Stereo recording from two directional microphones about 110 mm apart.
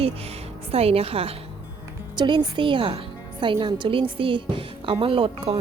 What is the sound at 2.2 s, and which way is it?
Speech, 40° right (ahead or behind).